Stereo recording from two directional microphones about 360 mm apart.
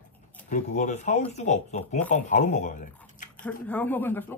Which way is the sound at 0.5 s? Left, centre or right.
Centre.